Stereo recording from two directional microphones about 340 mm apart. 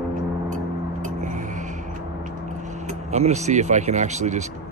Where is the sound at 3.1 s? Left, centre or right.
Centre.